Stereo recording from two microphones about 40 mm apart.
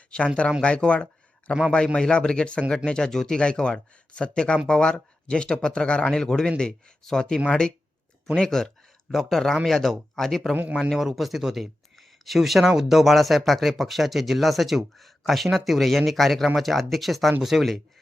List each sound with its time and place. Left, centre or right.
0.1 s speech: left
3.4 s speech: left; by 10.5 s centre
10.5 s speech: right
10.8 s speech: centre
11.0 s speech: centre